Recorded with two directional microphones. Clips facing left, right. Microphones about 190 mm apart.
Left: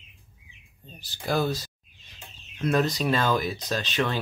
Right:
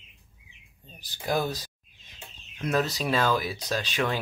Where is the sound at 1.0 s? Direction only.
15° right (ahead or behind).